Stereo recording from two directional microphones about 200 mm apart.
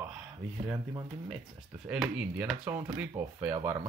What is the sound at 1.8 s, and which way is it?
Speech, 5° right (ahead or behind).